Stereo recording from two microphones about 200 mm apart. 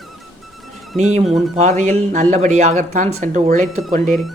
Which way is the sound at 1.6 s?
35° right (ahead or behind).